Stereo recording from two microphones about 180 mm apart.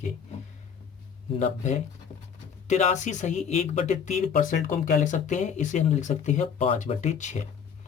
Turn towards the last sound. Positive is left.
turn(degrees=40)  # may be behind; listen again after turning